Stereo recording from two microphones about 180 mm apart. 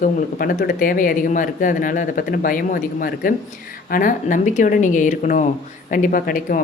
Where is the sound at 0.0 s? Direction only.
55° left (ahead or behind).